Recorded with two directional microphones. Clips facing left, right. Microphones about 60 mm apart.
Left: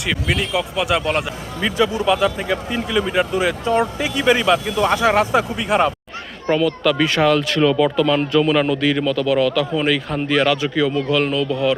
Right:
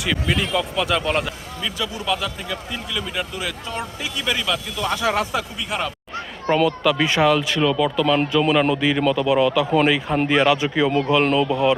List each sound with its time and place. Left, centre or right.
0.0 s speech: centre
2.0 s speech: left
4.7 s speech: left
4.9 s speech: centre
5.3 s speech: left
6.5 s speech: centre; by 11.8 s right